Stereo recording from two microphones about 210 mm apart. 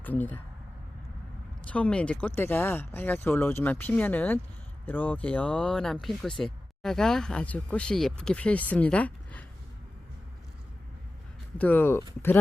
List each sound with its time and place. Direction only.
0.0 s speech: 10° left (ahead or behind)
1.6 s speech: 5° left (ahead or behind)
11.5 s speech: 10° left (ahead or behind)